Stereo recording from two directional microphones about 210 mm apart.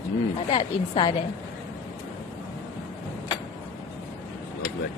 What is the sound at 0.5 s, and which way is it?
Speech, 25° left (ahead or behind).